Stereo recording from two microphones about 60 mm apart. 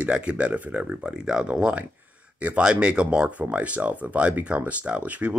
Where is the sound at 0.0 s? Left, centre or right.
Right.